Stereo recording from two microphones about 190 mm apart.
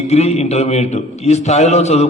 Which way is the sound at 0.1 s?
35° left (ahead or behind).